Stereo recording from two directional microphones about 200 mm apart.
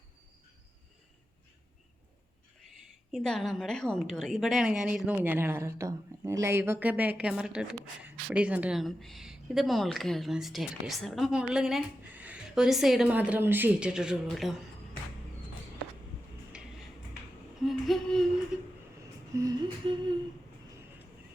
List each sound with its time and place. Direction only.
2.6 s speech: centre (ahead or behind)
16.5 s tick-tock: 5° right (ahead or behind)
17.6 s a sound: centre (ahead or behind)
19.4 s humming: 15° right (ahead or behind)